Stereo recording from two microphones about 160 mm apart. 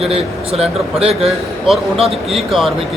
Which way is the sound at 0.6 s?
40° right (ahead or behind).